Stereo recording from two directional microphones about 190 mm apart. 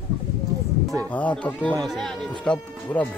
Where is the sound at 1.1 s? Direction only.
5° left (ahead or behind).